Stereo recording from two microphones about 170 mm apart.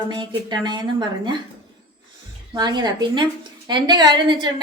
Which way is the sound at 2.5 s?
25° right (ahead or behind).